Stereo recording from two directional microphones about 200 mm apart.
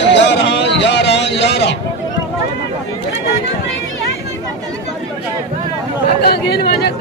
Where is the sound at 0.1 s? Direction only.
60° left (ahead or behind).